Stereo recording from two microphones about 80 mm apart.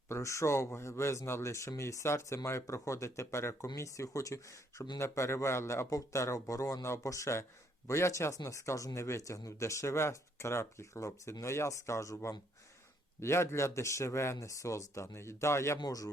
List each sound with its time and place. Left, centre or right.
0.1 s speech: left
15.8 s speech: left